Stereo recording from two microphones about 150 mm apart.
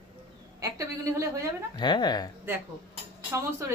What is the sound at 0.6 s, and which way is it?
Speech, 20° right (ahead or behind).